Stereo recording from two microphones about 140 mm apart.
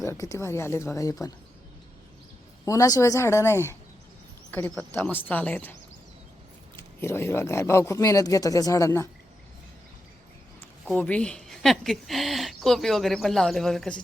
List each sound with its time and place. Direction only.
0.0 s speech: 20° left (ahead or behind)
2.6 s speech: 25° left (ahead or behind)
4.9 s speech: 15° left (ahead or behind)
6.7 s speech: 20° left (ahead or behind)
10.8 s speech: 10° left (ahead or behind)